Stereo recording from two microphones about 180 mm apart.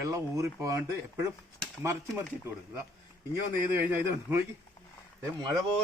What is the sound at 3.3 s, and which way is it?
Speech, 10° right (ahead or behind).